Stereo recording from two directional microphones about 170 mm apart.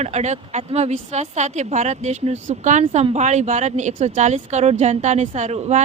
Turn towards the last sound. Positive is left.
turn(degrees=-40)  # may be behind; listen again after turning